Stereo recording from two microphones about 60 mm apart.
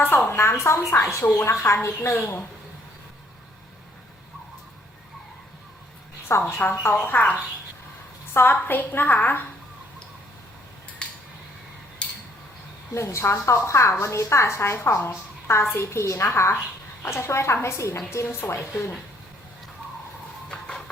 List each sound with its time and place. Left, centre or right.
0.0 s a woman's voice: left
1.2 s a woman's voice: left
1.6 s a woman's voice: left
6.3 s a woman's voice: left
6.7 s a woman's voice: left
11.0 s cutlery: centre
12.9 s a woman's voice: left
20.5 s music: centre